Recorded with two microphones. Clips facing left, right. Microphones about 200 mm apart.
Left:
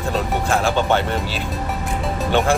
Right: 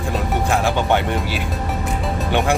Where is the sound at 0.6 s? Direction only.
15° right (ahead or behind).